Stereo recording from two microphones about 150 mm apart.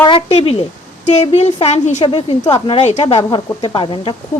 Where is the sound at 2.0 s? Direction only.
35° left (ahead or behind).